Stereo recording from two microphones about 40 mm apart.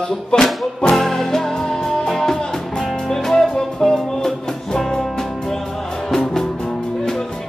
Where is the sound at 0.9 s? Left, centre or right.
Centre.